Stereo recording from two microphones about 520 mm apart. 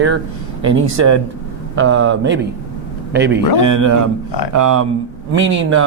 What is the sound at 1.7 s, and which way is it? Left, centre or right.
A man's voice, right.